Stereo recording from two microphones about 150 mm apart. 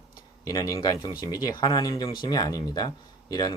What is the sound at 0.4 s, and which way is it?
Speech, 25° left (ahead or behind).